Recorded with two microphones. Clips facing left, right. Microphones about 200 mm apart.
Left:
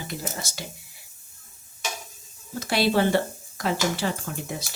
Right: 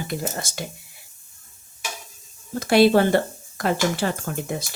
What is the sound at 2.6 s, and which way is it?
Speech, 55° right (ahead or behind).